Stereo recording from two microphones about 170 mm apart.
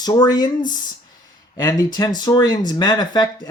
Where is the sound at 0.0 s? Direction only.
20° left (ahead or behind).